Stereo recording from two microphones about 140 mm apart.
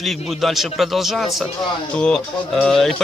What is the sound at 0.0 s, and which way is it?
Speech, centre (ahead or behind).